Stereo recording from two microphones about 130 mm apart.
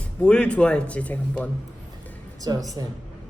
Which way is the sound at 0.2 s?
10° left (ahead or behind).